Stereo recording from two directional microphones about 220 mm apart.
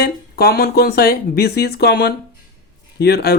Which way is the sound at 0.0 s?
45° left (ahead or behind).